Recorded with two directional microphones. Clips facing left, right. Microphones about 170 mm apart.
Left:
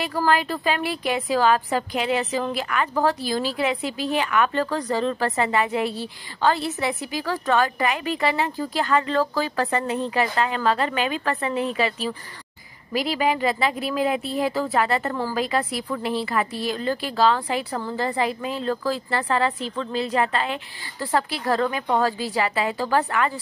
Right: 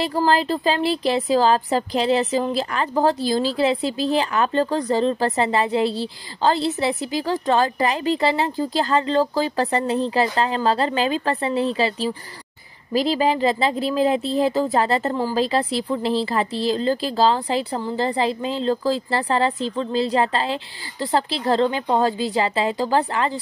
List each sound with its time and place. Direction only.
0.0 s a woman's voice: 30° right (ahead or behind)